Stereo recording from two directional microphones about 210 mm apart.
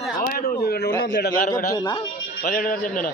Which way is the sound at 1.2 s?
50° left (ahead or behind).